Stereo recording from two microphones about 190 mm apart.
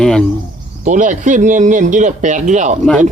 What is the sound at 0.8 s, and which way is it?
Speech, 40° right (ahead or behind).